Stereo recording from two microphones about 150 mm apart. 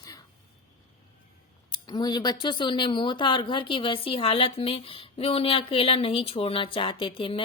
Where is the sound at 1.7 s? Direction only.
30° left (ahead or behind).